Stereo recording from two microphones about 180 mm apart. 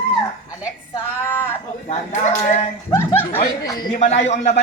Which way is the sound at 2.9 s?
15° left (ahead or behind).